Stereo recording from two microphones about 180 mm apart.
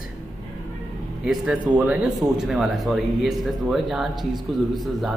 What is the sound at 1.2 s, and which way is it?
A man's voice, 5° right (ahead or behind).